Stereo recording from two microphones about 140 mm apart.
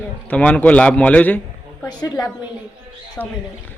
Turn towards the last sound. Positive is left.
turn(degrees=15)  # may be behind; listen again after turning